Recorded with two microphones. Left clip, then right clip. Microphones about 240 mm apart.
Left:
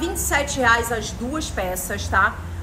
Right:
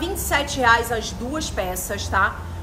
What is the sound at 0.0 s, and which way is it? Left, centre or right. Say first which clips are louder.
A woman's voice: even; centre.